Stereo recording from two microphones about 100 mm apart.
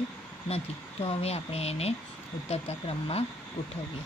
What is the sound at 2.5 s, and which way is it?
Speech, 80° left.